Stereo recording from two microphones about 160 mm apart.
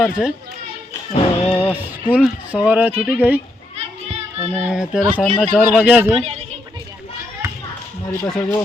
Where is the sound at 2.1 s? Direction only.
5° right (ahead or behind).